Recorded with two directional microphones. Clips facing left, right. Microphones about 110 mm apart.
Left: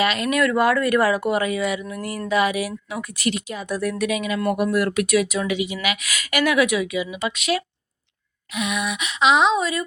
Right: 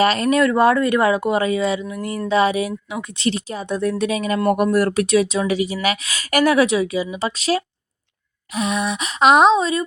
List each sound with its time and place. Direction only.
0.0 s speech: 35° right (ahead or behind)
8.5 s a sound: 35° right (ahead or behind)
9.5 s speech: 25° right (ahead or behind)